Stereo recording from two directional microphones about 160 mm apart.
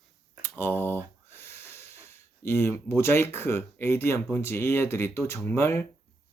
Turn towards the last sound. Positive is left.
turn(degrees=15)  # may be behind; listen again after turning